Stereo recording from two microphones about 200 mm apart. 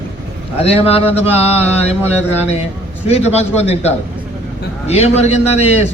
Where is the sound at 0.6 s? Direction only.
30° left (ahead or behind).